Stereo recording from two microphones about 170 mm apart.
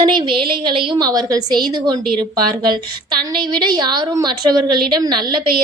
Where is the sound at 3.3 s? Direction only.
25° right (ahead or behind).